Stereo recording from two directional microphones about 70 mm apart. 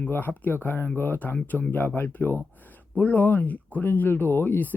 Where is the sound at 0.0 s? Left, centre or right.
Left.